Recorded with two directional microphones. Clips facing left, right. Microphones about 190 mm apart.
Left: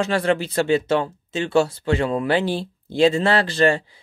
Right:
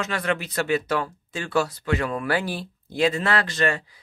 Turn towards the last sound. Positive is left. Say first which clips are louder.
# left 6 dB
turn(degrees=30)  # may be behind; listen again after turning